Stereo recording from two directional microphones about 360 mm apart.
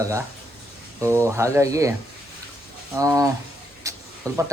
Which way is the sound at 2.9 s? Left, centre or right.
Centre.